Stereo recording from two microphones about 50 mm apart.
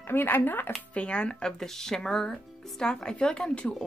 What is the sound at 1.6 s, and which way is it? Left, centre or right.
Speech, centre.